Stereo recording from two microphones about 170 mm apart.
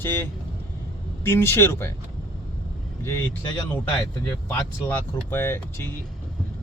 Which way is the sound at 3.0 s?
15° left (ahead or behind).